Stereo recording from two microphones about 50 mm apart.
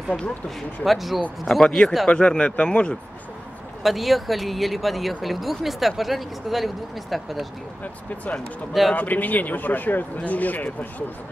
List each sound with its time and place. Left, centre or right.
0.8 s speech: centre
2.0 s speech: centre
3.8 s speech: centre
8.9 s speech: left